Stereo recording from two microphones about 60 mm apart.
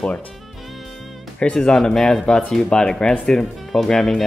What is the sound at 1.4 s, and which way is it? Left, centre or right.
Speech, centre.